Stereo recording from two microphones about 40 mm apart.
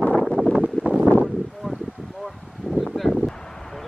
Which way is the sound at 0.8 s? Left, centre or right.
Left.